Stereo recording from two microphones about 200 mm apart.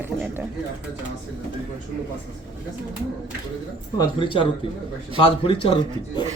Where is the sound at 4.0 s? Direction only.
25° left (ahead or behind).